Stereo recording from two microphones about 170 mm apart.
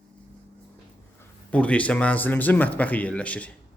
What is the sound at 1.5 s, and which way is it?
Speech, 5° left (ahead or behind).